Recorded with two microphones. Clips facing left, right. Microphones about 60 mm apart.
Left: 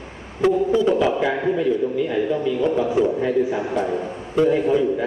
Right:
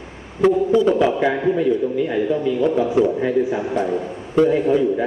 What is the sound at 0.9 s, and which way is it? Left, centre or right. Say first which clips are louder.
Speech: right 2 dB; centre.